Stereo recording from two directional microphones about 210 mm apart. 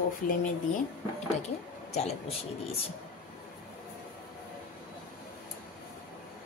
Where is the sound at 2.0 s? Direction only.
30° left (ahead or behind).